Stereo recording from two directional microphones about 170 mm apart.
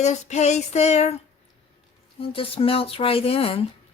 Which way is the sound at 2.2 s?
35° left (ahead or behind).